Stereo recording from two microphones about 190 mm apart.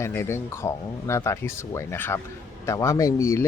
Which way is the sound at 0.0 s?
15° left (ahead or behind).